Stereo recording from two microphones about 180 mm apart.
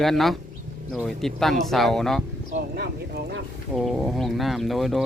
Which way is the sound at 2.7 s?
65° right (ahead or behind).